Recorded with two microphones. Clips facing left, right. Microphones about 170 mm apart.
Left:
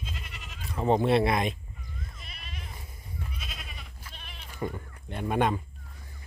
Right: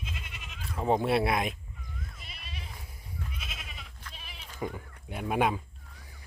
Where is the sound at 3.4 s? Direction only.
Centre (ahead or behind).